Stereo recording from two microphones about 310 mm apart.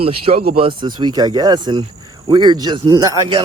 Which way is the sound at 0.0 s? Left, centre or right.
Centre.